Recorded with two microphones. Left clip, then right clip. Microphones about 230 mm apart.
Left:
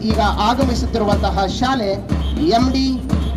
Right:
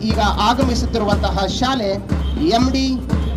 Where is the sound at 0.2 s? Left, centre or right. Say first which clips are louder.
Even; right.